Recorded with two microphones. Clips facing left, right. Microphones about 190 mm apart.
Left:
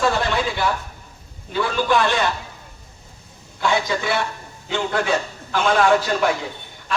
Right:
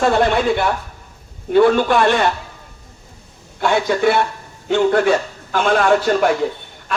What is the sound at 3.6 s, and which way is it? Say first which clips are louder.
A man's voice: right 5 dB; 55° right (ahead or behind).